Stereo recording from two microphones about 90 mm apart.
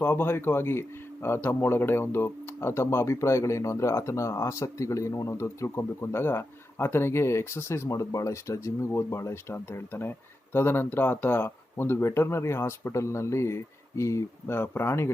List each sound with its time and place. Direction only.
0.0 s speech: 25° left (ahead or behind)